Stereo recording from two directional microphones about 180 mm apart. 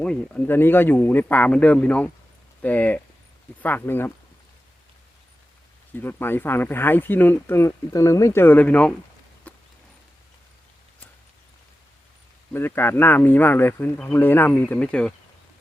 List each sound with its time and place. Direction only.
0.0 s speech: 5° left (ahead or behind)
5.9 s speech: 10° left (ahead or behind)
9.5 s a sound: 10° left (ahead or behind)
12.5 s speech: 10° left (ahead or behind)